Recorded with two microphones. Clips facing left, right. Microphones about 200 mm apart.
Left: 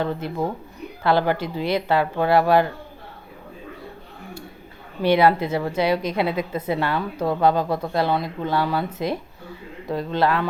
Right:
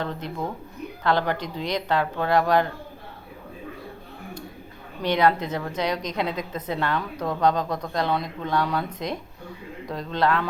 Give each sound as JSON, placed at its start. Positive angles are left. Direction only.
{"t": 0.0, "sound": "a woman's voice", "side_deg": 10}
{"t": 5.0, "sound": "a woman's voice", "side_deg": 10}